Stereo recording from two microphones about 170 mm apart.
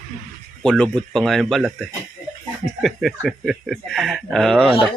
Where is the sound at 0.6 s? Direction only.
5° left (ahead or behind).